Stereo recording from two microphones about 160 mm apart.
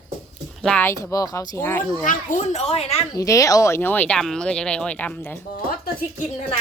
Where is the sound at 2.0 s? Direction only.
55° left (ahead or behind).